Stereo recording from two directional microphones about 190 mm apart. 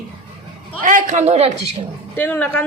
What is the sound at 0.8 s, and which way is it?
Speech, 45° right (ahead or behind).